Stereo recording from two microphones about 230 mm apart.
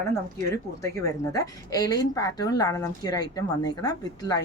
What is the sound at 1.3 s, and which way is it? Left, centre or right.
Speech, centre.